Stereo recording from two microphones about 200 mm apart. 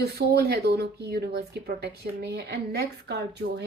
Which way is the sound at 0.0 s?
55° right (ahead or behind).